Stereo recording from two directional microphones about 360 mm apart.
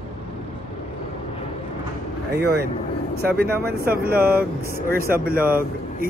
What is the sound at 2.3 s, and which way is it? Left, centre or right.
A man's voice, right.